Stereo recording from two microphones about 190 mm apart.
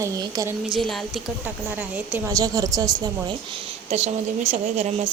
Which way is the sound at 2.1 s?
20° right (ahead or behind).